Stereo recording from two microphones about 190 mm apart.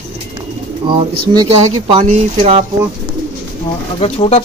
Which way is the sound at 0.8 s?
30° right (ahead or behind).